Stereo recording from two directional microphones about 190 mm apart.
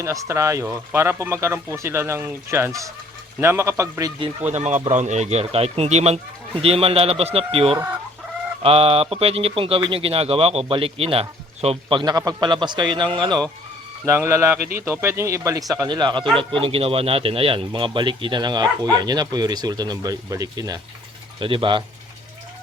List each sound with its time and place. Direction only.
0.0 s speech: 15° right (ahead or behind)
4.5 s speech: 40° right (ahead or behind)